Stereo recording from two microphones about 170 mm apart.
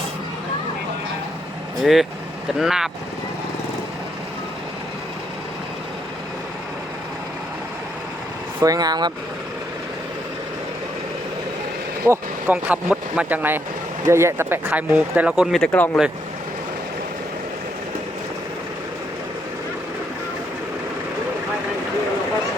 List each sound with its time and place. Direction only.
1.8 s speech: centre (ahead or behind)
8.6 s speech: 20° right (ahead or behind)
12.0 s speech: 15° right (ahead or behind); by 15.9 s 5° left (ahead or behind)